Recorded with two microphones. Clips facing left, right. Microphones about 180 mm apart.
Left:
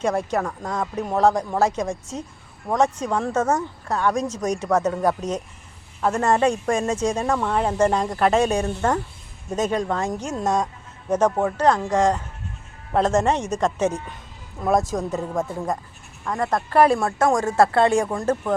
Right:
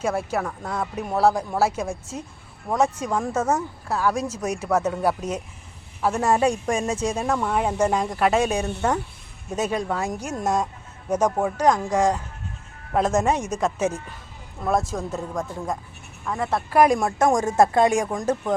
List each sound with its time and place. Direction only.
0.0 s speech: 5° right (ahead or behind)
18.0 s speech: 5° left (ahead or behind)